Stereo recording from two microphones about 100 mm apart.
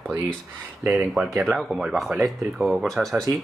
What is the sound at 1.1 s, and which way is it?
Speech, centre (ahead or behind).